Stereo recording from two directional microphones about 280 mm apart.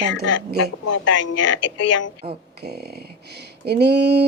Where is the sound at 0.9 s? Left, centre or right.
Left.